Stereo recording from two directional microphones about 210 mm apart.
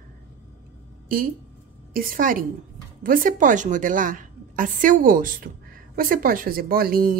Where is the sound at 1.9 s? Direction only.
40° right (ahead or behind).